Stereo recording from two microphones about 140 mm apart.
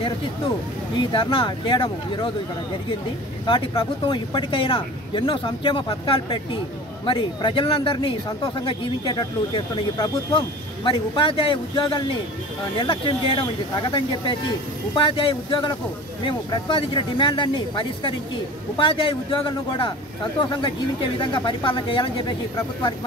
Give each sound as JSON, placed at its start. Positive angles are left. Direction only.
{"t": 0.9, "sound": "speech", "side_deg": 35}
{"t": 3.4, "sound": "speech", "side_deg": 35}
{"t": 21.2, "sound": "speech", "side_deg": 35}